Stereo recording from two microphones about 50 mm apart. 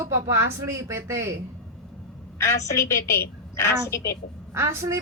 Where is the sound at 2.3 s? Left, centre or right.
Left.